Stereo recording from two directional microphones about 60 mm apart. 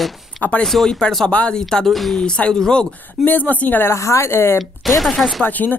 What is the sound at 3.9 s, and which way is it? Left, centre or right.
Speech, left.